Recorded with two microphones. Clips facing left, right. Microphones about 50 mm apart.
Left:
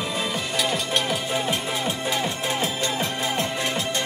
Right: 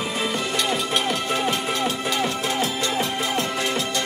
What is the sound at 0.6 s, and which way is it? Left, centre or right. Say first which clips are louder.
Music: even; centre.